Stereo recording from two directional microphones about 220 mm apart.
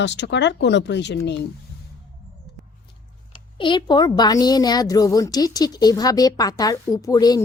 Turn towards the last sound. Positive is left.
turn(degrees=15)  # may be behind; listen again after turning